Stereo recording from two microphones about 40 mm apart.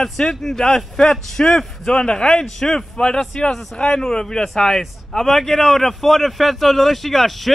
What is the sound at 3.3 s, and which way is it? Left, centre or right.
A man's voice, left.